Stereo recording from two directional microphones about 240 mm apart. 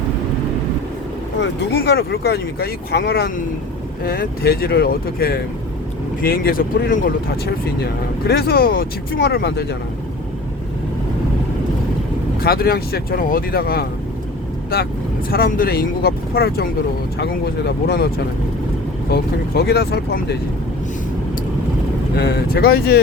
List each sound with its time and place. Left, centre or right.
1.4 s speech: left
8.3 s speech: left
12.4 s speech: left
15.3 s speech: left
17.8 s speech: left
19.1 s speech: left
22.1 s speech: left